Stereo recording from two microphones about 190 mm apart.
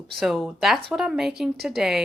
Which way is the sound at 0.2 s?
Centre (ahead or behind).